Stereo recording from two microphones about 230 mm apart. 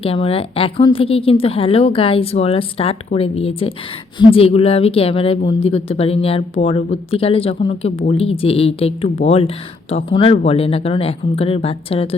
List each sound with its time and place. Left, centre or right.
0.0 s speech: left